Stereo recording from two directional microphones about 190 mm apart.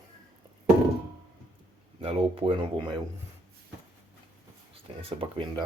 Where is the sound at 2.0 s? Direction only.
30° right (ahead or behind).